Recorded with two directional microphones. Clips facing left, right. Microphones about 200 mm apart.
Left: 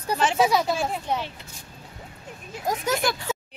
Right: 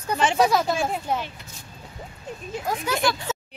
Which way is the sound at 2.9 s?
45° left (ahead or behind).